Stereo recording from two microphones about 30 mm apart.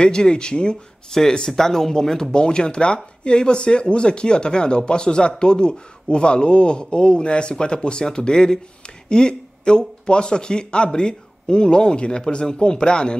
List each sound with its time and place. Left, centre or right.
0.0 s speech: left
1.4 s speech: centre
2.3 s a man's voice: left